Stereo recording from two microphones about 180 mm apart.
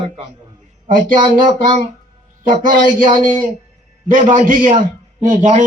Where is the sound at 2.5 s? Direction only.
45° right (ahead or behind).